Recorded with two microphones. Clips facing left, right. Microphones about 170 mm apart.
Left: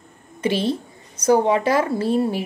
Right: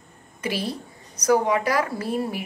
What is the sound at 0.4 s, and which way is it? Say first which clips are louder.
Speech: left 7 dB; 25° left (ahead or behind).